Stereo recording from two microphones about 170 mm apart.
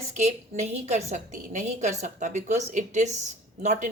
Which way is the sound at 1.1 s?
45° right (ahead or behind).